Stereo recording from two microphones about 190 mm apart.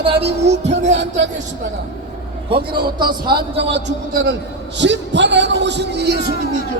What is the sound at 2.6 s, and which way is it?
Speech, 25° right (ahead or behind).